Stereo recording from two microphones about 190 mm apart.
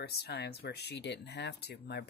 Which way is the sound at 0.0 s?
60° left (ahead or behind).